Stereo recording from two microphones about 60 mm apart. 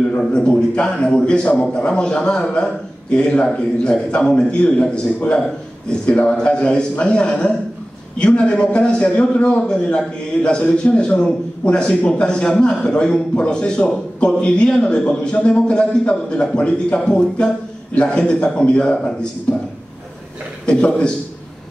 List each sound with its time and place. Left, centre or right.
0.2 s a man's voice: centre